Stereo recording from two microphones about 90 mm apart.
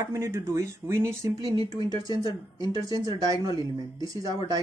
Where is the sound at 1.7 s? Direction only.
45° right (ahead or behind).